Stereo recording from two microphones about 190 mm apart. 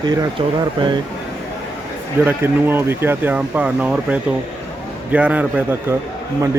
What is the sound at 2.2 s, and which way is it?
Speech, 10° right (ahead or behind).